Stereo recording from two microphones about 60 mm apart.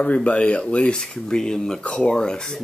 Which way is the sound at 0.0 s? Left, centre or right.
Left.